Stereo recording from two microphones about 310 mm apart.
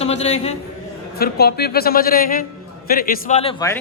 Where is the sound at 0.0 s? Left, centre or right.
Left.